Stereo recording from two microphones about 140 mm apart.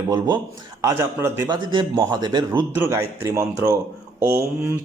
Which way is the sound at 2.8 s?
20° right (ahead or behind).